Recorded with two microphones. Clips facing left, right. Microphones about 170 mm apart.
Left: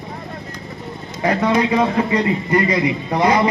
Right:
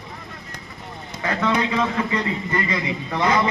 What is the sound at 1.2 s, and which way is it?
A man's voice, 35° left (ahead or behind).